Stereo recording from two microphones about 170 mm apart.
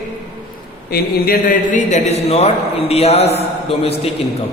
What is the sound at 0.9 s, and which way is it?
A man's voice, 65° left (ahead or behind).